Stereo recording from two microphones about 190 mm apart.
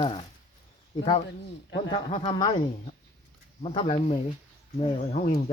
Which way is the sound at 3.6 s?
30° left (ahead or behind).